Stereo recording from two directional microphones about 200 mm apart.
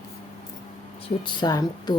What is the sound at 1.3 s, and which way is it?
Speech, 20° left (ahead or behind).